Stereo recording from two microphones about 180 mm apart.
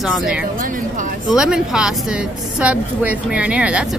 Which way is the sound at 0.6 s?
50° right (ahead or behind).